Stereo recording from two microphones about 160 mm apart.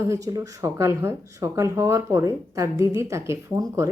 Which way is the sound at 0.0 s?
20° right (ahead or behind).